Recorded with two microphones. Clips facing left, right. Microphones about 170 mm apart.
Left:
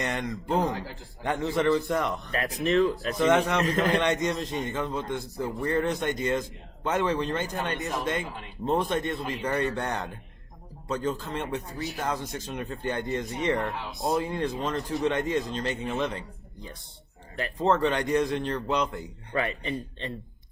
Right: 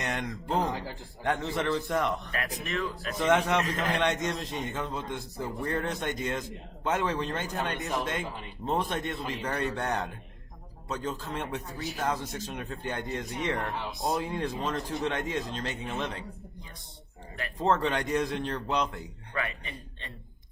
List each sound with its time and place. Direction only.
0.0 s speech: centre (ahead or behind)
3.2 s speech: centre (ahead or behind)
17.6 s speech: centre (ahead or behind)
19.3 s a man's voice: 30° left (ahead or behind)